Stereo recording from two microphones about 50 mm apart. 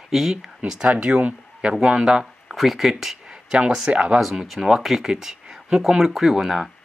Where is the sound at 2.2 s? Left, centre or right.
Centre.